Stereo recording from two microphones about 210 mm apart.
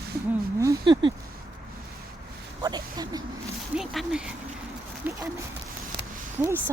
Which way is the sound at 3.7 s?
Centre (ahead or behind).